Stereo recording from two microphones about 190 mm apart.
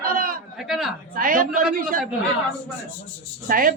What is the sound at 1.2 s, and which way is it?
Speech, 50° right (ahead or behind).